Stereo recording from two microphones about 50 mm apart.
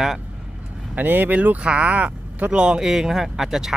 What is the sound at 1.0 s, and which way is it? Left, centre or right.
Speech, right.